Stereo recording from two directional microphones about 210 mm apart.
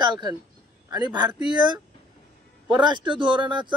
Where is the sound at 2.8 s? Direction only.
20° right (ahead or behind).